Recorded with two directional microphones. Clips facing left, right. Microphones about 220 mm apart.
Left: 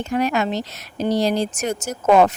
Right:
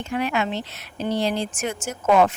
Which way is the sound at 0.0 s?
40° left (ahead or behind).